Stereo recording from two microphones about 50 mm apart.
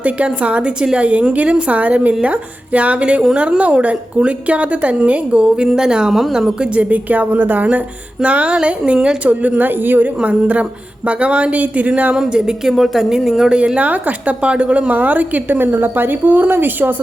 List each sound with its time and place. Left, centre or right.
0.0 s a woman's voice: right; by 6.5 s centre
6.7 s a woman's voice: right
8.5 s speech: centre
9.2 s a woman's voice: right
10.2 s a woman's voice: right
12.1 s speech: centre
12.7 s speech: centre
13.7 s a woman's voice: right